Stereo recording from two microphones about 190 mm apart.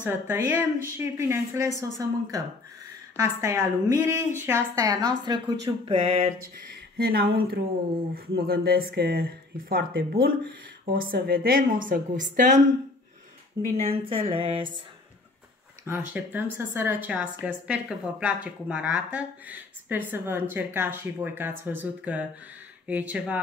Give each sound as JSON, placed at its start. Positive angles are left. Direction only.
{"t": 0.0, "sound": "speech", "side_deg": -10}
{"t": 3.2, "sound": "speech", "side_deg": -15}
{"t": 7.0, "sound": "speech", "side_deg": -55}
{"t": 13.7, "sound": "speech", "side_deg": -30}
{"t": 15.9, "sound": "speech", "side_deg": -10}